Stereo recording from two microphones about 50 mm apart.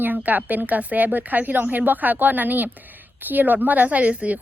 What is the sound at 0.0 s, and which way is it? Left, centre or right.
A woman's voice, right.